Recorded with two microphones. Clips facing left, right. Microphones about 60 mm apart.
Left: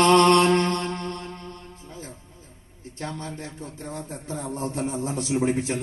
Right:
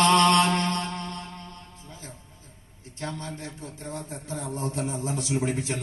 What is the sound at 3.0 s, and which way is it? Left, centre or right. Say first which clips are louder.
Music: left 1 dB; left.